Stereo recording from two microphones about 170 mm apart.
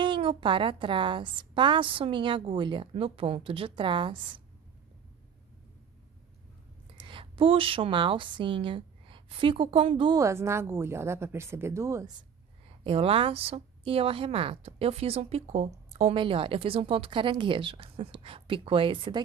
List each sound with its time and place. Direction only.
0.0 s a woman's voice: 30° right (ahead or behind)
7.0 s a woman's voice: 30° right (ahead or behind)
10.1 s speech: 15° right (ahead or behind)
12.8 s speech: 35° right (ahead or behind)